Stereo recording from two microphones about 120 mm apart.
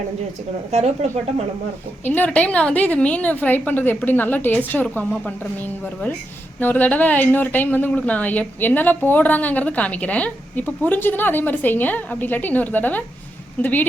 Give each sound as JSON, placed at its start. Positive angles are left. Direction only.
{"t": 0.7, "sound": "speech", "side_deg": -65}
{"t": 2.0, "sound": "a woman's voice", "side_deg": 15}